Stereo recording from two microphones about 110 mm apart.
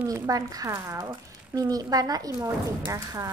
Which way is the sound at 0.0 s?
35° right (ahead or behind).